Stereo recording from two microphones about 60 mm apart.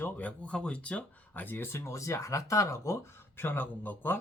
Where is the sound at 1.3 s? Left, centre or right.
Left.